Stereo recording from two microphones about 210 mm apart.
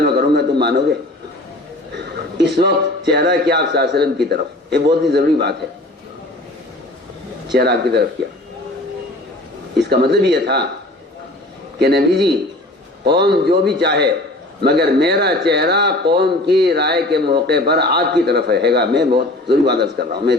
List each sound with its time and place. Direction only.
0.3 s a sound: 50° right (ahead or behind)
2.4 s a sound: 50° right (ahead or behind)
3.1 s speech: 50° right (ahead or behind)
7.5 s speech: 50° right (ahead or behind)
9.9 s speech: 50° right (ahead or behind)
11.8 s speech: 50° right (ahead or behind)